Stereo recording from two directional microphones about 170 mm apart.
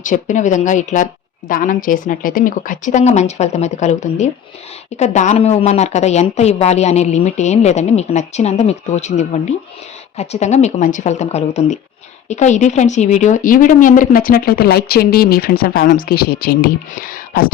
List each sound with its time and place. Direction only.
0.0 s a woman's voice: 50° left (ahead or behind)